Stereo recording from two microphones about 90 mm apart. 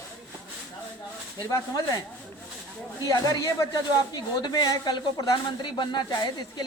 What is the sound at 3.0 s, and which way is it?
Speech, 40° left (ahead or behind).